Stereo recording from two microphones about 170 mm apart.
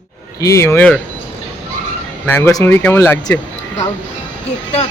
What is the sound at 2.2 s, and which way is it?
Speech, 10° left (ahead or behind).